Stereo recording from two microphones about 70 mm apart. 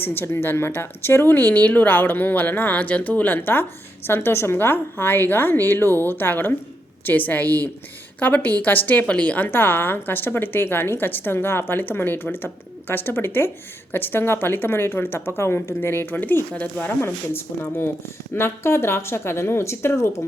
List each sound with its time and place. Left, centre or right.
0.0 s speech: left
9.5 s a woman's voice: left
17.6 s a woman's voice: left